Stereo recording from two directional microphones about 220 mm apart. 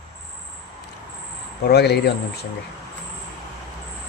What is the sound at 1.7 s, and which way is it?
Speech, 50° left (ahead or behind).